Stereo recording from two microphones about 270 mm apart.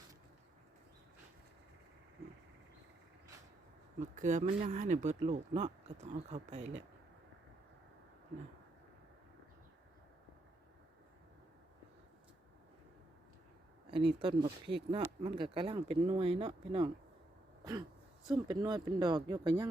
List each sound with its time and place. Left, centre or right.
4.0 s speech: right
13.9 s speech: centre
18.3 s speech: centre